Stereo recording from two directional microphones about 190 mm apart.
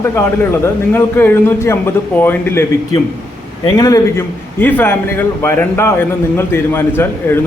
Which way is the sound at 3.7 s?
20° left (ahead or behind).